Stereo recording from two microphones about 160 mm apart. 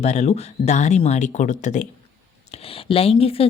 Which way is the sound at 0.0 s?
45° left (ahead or behind).